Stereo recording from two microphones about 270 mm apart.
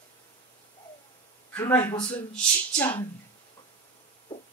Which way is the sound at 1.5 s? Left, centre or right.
Centre.